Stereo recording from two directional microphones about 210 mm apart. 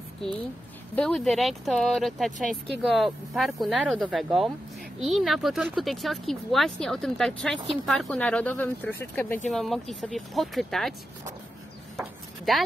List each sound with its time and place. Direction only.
0.9 s speech: 5° left (ahead or behind)
7.5 s speech: 25° right (ahead or behind)
7.8 s speech: centre (ahead or behind)
12.0 s a sound: centre (ahead or behind)